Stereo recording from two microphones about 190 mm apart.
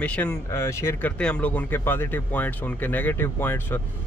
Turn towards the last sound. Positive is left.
turn(degrees=10)  # may be behind; listen again after turning